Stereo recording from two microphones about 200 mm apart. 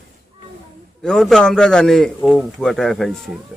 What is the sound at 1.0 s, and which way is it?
A man's voice, centre (ahead or behind).